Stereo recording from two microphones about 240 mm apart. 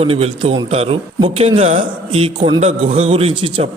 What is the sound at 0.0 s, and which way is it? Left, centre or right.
A man's voice, right.